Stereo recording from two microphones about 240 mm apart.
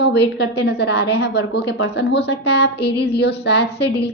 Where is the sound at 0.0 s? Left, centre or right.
Left.